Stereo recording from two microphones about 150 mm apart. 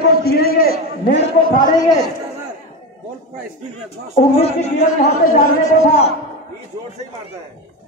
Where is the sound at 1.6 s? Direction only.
25° left (ahead or behind).